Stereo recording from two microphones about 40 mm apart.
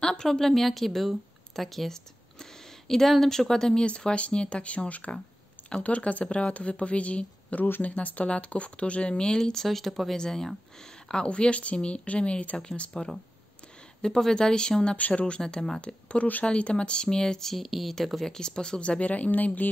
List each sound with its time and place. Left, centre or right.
0.0 s a woman's voice: centre
3.8 s speech: left
9.4 s a woman's voice: centre
10.1 s speech: centre
12.9 s speech: centre
15.0 s speech: left
15.4 s speech: centre
16.4 s speech: left
17.5 s a woman's voice: centre
18.3 s speech: centre
18.8 s speech: left